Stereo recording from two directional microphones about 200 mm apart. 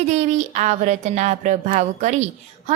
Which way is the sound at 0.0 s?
35° right (ahead or behind).